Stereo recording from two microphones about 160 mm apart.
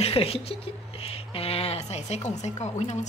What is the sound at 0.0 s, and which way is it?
Speech, 35° left (ahead or behind).